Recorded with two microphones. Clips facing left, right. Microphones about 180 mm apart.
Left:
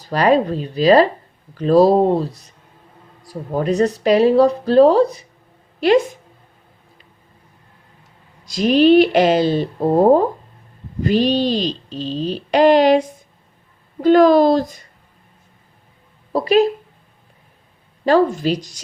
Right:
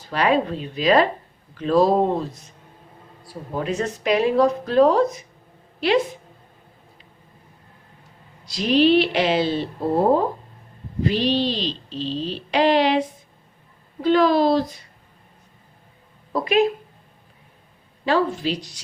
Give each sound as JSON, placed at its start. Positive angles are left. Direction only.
{"t": 0.0, "sound": "speech", "side_deg": 40}
{"t": 8.4, "sound": "speech", "side_deg": 45}
{"t": 16.3, "sound": "speech", "side_deg": 35}
{"t": 18.0, "sound": "speech", "side_deg": 45}